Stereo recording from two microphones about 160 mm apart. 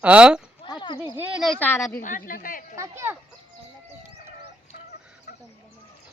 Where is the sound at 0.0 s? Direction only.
5° right (ahead or behind).